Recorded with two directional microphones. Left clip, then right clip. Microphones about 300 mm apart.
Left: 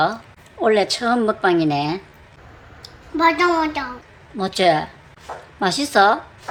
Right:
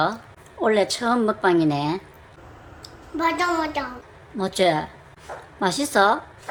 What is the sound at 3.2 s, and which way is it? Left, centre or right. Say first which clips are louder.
A child's voice: left 6 dB; centre.